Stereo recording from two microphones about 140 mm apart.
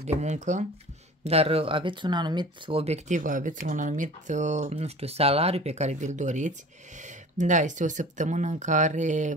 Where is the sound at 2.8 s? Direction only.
55° right (ahead or behind).